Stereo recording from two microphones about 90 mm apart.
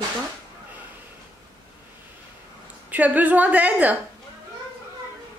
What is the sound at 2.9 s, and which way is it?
Speech, 20° right (ahead or behind).